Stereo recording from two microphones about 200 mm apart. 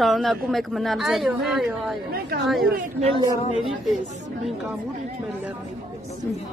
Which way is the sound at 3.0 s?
25° right (ahead or behind).